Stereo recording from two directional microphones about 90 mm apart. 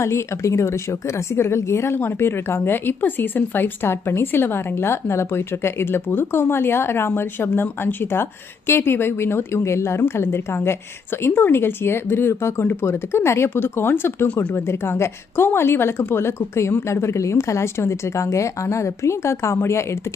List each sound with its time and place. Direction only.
0.0 s a woman's voice: 30° left (ahead or behind)